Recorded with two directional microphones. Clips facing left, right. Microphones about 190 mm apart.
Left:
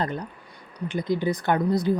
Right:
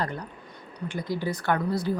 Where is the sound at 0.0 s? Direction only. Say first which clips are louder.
Left 3 dB; 20° left (ahead or behind).